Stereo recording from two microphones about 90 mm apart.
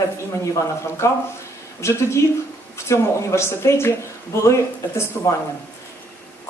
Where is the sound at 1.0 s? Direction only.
30° left (ahead or behind).